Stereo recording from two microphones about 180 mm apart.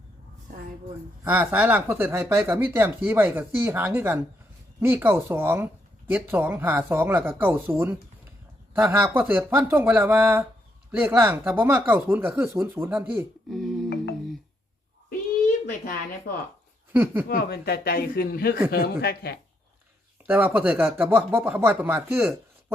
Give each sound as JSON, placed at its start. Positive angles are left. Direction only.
{"t": 1.2, "sound": "speech", "side_deg": -10}
{"t": 13.5, "sound": "music", "side_deg": 0}
{"t": 16.9, "sound": "speech", "side_deg": -10}
{"t": 17.2, "sound": "speech", "side_deg": 60}
{"t": 20.2, "sound": "speech", "side_deg": -10}